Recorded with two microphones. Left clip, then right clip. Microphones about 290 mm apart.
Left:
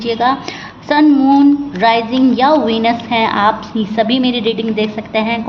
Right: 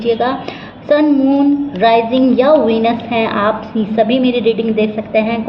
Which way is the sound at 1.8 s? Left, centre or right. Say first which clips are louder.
Right 4 dB; left.